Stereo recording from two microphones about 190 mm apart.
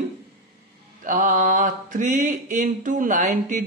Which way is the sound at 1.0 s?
45° right (ahead or behind).